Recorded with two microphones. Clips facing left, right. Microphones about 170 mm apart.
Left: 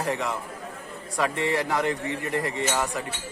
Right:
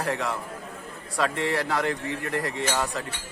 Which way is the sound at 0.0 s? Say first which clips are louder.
Even; 15° left (ahead or behind).